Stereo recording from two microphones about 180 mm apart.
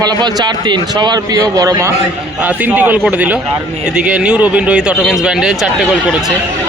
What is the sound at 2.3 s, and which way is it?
A man's voice, 10° right (ahead or behind).